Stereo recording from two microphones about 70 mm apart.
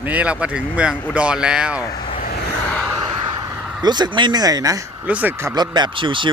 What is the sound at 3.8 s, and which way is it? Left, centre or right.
Speech, right.